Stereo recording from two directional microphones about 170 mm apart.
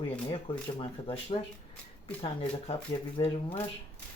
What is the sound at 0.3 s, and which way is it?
Speech, 30° left (ahead or behind).